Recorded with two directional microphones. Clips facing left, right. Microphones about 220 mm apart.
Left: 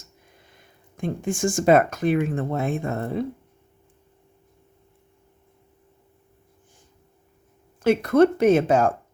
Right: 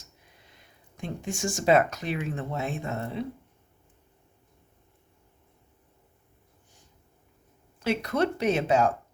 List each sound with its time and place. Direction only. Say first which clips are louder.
0.9 s speech: left 7 dB; 50° left (ahead or behind)
7.8 s speech: left 9 dB; 50° left (ahead or behind)